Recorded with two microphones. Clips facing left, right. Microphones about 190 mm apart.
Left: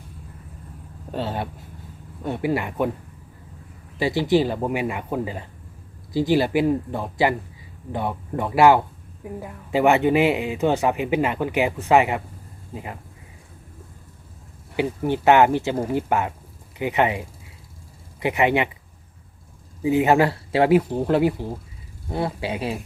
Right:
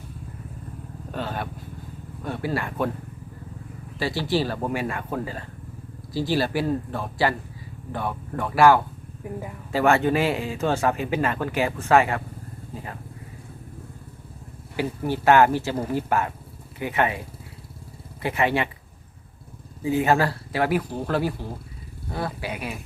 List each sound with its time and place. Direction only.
1.1 s speech: 25° left (ahead or behind)
3.9 s speech: 20° left (ahead or behind)
9.2 s speech: centre (ahead or behind)
9.7 s speech: 20° left (ahead or behind)
14.8 s speech: 20° left (ahead or behind)
19.8 s speech: 20° left (ahead or behind)